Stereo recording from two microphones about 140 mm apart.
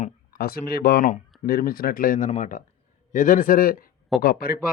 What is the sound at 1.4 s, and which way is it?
Speech, 90° left.